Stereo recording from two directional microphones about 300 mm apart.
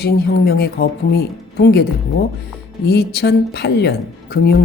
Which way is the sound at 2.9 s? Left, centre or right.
Left.